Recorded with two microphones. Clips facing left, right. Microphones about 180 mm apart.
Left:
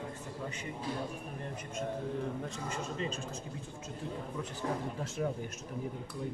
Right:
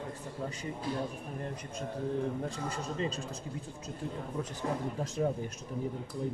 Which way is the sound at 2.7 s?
35° right (ahead or behind).